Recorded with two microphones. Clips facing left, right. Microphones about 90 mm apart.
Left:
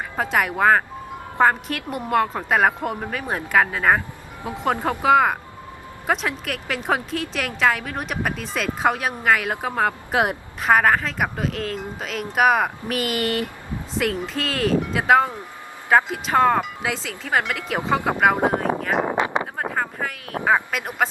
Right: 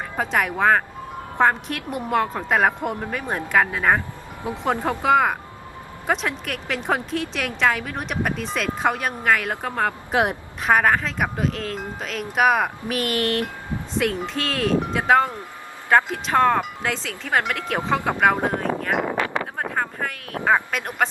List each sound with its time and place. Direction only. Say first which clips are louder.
0.2 s speech: left 1 dB; centre (ahead or behind)
18.9 s a sound: left 2 dB; 20° left (ahead or behind)
19.5 s speech: even; centre (ahead or behind)